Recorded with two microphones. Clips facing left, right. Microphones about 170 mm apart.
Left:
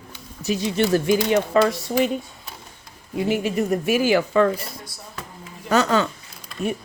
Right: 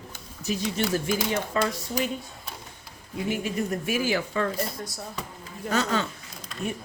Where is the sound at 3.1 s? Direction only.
75° left (ahead or behind).